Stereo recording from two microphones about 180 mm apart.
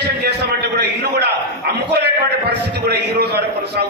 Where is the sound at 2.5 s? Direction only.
65° right (ahead or behind).